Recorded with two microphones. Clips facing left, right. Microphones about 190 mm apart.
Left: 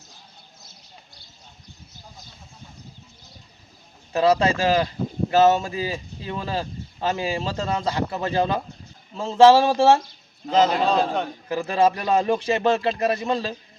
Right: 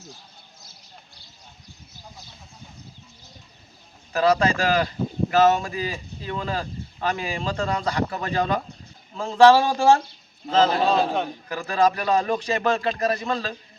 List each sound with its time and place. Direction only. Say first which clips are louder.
4.1 s a man's voice: left 1 dB; 25° left (ahead or behind)
10.8 s a man's voice: even; 5° right (ahead or behind)
11.4 s speech: left 2 dB; 25° left (ahead or behind)